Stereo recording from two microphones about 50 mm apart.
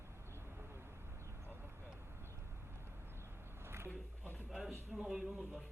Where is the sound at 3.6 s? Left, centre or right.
Right.